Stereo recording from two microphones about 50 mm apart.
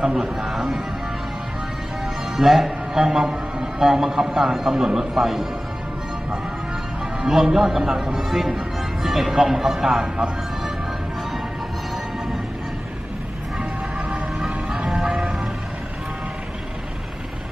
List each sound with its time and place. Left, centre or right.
0.0 s a sound: centre
2.3 s speech: centre
7.2 s speech: centre
13.6 s vehicle: right
14.4 s music: centre